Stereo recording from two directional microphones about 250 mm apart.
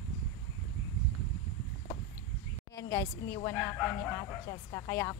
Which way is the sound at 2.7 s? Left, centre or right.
Centre.